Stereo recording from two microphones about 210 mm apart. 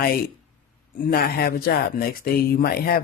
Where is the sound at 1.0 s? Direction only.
45° left (ahead or behind).